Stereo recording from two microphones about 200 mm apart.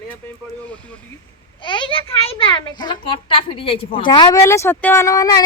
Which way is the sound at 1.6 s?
25° left (ahead or behind).